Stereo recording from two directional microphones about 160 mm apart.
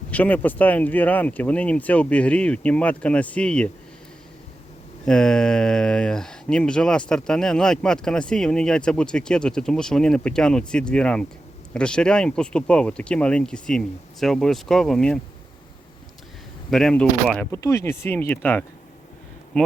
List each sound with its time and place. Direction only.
0.1 s speech: 10° left (ahead or behind)
5.0 s speech: 5° left (ahead or behind)
16.6 s speech: 5° left (ahead or behind)
17.5 s speech: 20° left (ahead or behind)